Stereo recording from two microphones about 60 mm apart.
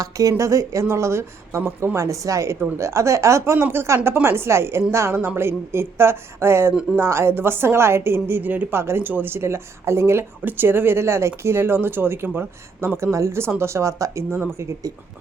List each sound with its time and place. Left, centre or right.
0.0 s a woman's voice: right
2.0 s a woman's voice: right
8.7 s speech: right
10.4 s speech: right
14.3 s a woman's voice: right